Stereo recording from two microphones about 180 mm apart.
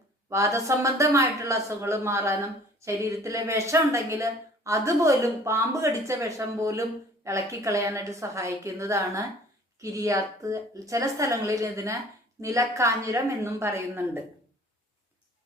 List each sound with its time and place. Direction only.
0.3 s speech: 15° right (ahead or behind)